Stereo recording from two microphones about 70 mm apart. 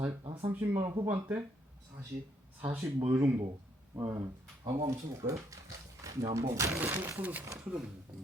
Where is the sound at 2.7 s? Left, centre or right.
Right.